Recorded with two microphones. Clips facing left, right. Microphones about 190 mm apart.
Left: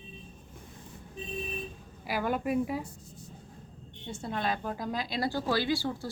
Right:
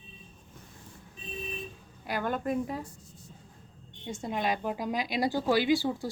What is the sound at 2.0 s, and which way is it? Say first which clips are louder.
Speech: left 1 dB; 5° left (ahead or behind).